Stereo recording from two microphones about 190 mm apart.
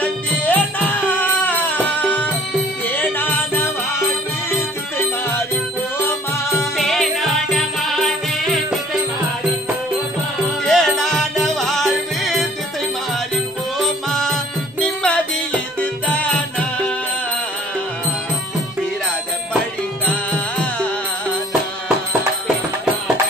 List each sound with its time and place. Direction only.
0.0 s music: 10° left (ahead or behind)
5.9 s music: 15° left (ahead or behind)
6.8 s music: centre (ahead or behind)
10.6 s music: centre (ahead or behind)
13.7 s music: 5° left (ahead or behind)
20.1 s music: 5° left (ahead or behind)